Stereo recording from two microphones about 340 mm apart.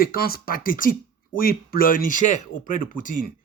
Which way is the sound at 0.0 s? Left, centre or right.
Left.